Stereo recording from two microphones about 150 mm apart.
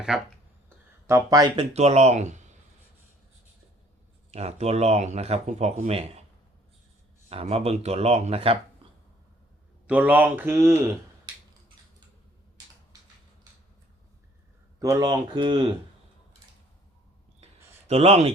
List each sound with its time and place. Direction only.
0.1 s speech: 5° right (ahead or behind)
1.0 s speech: 20° right (ahead or behind)
1.5 s speech: 45° right (ahead or behind)
4.3 s speech: 45° right (ahead or behind)
7.3 s speech: 40° right (ahead or behind)
9.8 s a man's voice: 10° right (ahead or behind)
14.8 s speech: 20° right (ahead or behind)
17.8 s speech: 45° right (ahead or behind)